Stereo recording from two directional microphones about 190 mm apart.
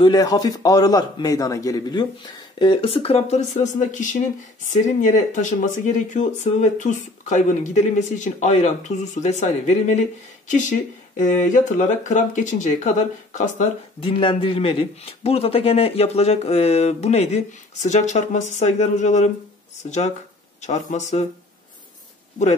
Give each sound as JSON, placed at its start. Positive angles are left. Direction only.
{"t": 0.0, "sound": "a man's voice", "side_deg": 20}